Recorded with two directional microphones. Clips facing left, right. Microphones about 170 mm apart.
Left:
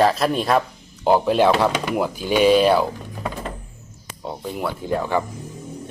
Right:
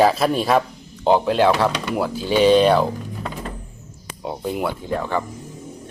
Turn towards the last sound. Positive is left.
turn(degrees=10)  # may be behind; listen again after turning